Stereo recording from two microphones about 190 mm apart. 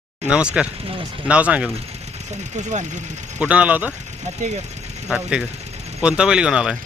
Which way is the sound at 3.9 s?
35° right (ahead or behind).